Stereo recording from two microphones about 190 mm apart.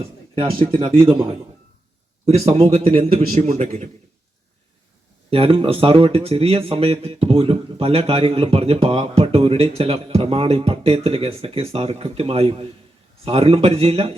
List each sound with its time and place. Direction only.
0.8 s speech: 30° right (ahead or behind)
5.3 s speech: 30° right (ahead or behind)